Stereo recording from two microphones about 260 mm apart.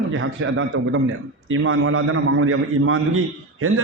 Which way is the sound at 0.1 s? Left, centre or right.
Right.